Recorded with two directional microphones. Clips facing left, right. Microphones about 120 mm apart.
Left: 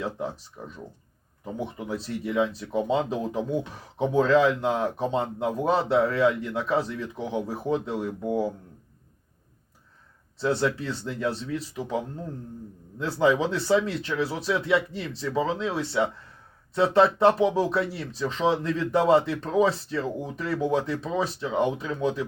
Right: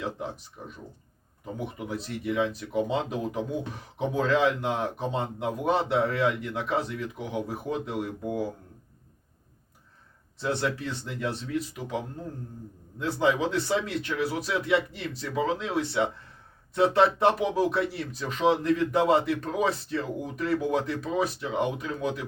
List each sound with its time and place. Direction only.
0.6 s speech: 25° left (ahead or behind)
10.4 s speech: 30° left (ahead or behind)
13.1 s speech: 30° left (ahead or behind)